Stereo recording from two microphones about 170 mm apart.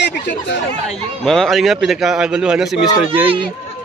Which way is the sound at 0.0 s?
90° left.